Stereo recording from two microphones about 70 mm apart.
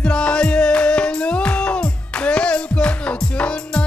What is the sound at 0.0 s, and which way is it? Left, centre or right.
Music, centre.